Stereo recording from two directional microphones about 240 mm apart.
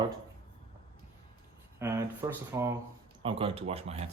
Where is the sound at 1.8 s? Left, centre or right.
Centre.